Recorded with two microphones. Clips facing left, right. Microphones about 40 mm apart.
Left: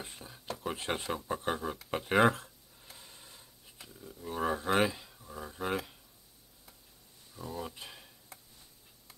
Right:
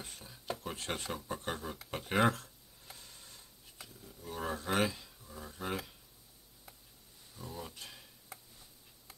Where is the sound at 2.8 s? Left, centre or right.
Centre.